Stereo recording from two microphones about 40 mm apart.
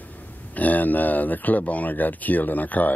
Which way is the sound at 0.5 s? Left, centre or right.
Left.